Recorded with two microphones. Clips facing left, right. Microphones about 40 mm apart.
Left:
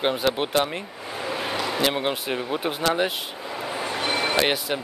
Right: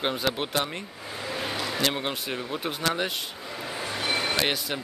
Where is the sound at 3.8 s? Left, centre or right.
Centre.